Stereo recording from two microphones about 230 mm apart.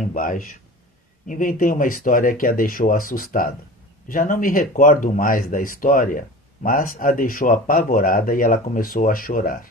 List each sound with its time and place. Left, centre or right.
0.0 s speech: left